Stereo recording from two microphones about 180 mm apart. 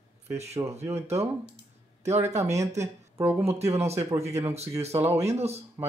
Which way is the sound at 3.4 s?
35° right (ahead or behind).